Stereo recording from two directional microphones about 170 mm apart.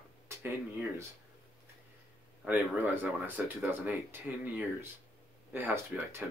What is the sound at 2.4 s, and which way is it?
Speech, 10° right (ahead or behind).